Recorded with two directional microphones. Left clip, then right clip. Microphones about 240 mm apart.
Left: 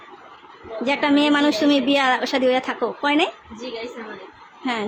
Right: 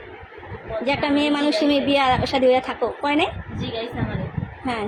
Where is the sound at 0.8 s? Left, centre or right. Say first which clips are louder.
Left 2 dB; centre.